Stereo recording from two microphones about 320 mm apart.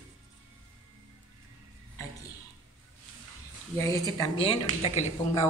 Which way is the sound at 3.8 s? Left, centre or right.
Centre.